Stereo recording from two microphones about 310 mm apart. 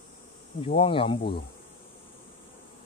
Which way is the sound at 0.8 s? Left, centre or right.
Centre.